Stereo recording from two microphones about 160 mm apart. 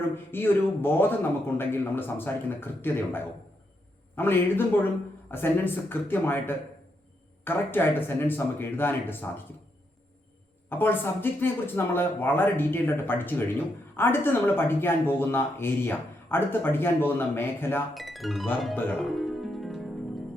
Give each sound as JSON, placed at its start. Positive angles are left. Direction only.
{"t": 0.3, "sound": "speech", "side_deg": 15}
{"t": 10.7, "sound": "speech", "side_deg": 15}
{"t": 17.9, "sound": "speech", "side_deg": 0}
{"t": 19.1, "sound": "music", "side_deg": 0}